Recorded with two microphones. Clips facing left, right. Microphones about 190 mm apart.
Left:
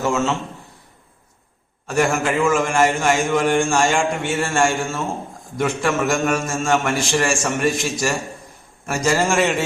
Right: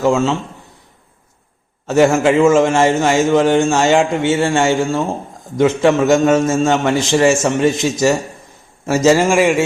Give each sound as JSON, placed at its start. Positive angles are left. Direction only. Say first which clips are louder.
{"t": 0.0, "sound": "a man's voice", "louder": "right 6 dB", "side_deg": -15}
{"t": 1.9, "sound": "a man's voice", "louder": "right 8 dB", "side_deg": -25}
{"t": 9.1, "sound": "a man's voice", "louder": "right 6 dB", "side_deg": -10}